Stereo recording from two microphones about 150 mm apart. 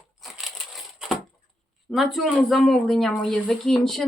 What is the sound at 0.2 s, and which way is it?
Crushing, centre (ahead or behind).